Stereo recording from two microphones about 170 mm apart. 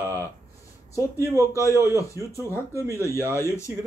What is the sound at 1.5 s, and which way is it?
Speech, 15° left (ahead or behind).